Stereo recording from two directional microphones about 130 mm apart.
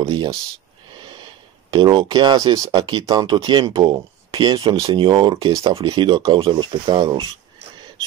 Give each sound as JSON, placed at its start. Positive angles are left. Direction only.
{"t": 1.7, "sound": "speech", "side_deg": -35}
{"t": 3.7, "sound": "a sound", "side_deg": -30}
{"t": 4.4, "sound": "speech", "side_deg": -40}
{"t": 5.9, "sound": "speech", "side_deg": -30}